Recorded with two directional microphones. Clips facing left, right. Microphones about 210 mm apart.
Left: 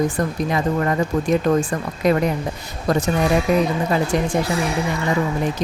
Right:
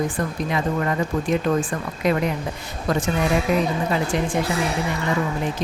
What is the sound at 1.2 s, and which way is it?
Speech, 40° left (ahead or behind).